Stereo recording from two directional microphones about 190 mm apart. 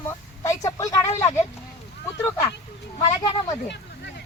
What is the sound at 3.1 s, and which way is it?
Speech, 20° left (ahead or behind).